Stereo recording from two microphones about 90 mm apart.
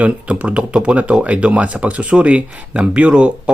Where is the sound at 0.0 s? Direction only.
15° right (ahead or behind).